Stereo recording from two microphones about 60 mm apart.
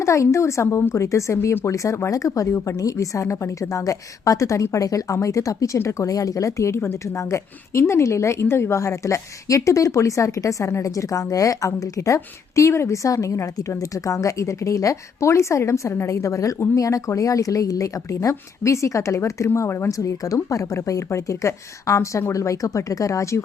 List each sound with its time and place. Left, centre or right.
0.0 s a woman's voice: left
19.5 s a woman's voice: left
19.9 s a woman's voice: left